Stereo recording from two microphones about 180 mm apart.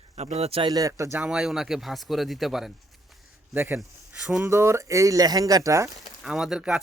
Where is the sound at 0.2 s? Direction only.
35° right (ahead or behind); by 1.2 s 15° right (ahead or behind).